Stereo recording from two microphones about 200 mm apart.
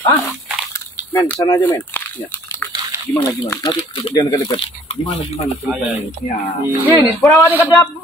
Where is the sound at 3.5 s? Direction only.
20° left (ahead or behind).